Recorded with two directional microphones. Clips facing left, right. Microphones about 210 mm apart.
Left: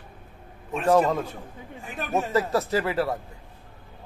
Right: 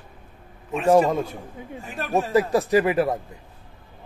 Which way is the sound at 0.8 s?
10° right (ahead or behind).